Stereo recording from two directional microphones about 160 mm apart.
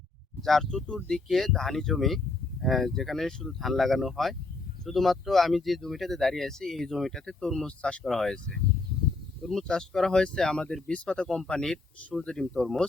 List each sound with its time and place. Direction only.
0.4 s speech: centre (ahead or behind)